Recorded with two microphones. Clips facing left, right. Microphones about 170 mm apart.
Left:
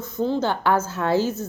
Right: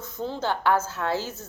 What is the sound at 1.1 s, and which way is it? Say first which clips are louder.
Speech: left 10 dB; 55° left (ahead or behind).